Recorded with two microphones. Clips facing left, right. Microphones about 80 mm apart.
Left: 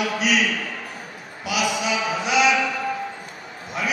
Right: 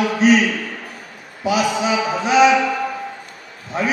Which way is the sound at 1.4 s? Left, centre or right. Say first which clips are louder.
Right 6 dB; right.